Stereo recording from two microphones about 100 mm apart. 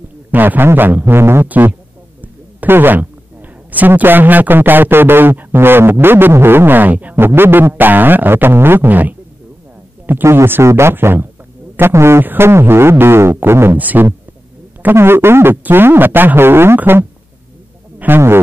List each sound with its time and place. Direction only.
0.3 s a man's voice: 20° right (ahead or behind)
2.2 s a sound: 20° right (ahead or behind)
3.7 s a man's voice: 15° right (ahead or behind)